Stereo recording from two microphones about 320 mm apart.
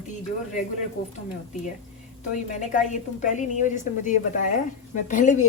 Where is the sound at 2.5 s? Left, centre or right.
Left.